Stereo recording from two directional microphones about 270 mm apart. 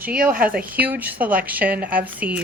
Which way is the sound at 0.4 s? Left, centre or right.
Centre.